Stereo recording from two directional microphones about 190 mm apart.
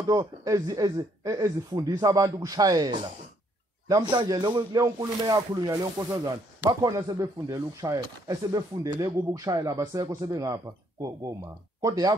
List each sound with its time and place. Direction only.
0.0 s speech: 20° right (ahead or behind)
4.1 s speech: 25° right (ahead or behind)